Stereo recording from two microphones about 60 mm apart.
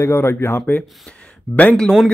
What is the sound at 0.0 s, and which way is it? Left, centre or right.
Speech, left.